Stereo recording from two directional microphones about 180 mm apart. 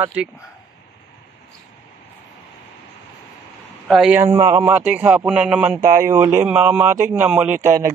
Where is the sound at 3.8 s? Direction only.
5° right (ahead or behind).